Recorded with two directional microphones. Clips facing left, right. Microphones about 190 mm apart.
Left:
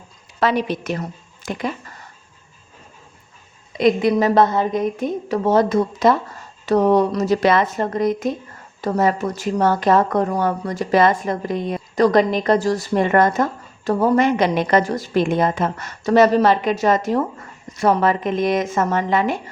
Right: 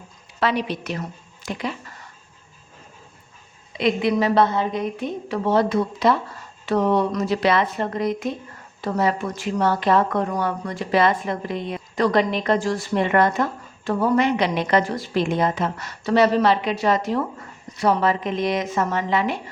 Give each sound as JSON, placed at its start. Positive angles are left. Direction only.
{"t": 0.3, "sound": "a woman's voice", "side_deg": 45}
{"t": 3.7, "sound": "speech", "side_deg": 45}